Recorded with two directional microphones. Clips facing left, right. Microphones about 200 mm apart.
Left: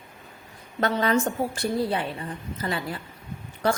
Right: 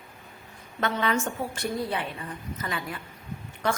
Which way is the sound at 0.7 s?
40° left (ahead or behind).